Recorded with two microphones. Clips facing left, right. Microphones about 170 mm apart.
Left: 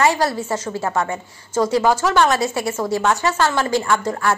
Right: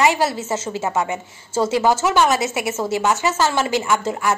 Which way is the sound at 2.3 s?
20° right (ahead or behind).